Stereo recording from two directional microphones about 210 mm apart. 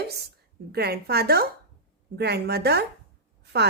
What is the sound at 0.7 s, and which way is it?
A woman's voice, 50° right (ahead or behind).